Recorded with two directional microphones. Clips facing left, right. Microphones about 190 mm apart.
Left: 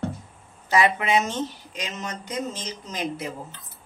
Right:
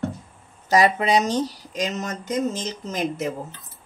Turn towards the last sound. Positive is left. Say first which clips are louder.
# right 5 dB
turn(degrees=-45)  # may be behind; listen again after turning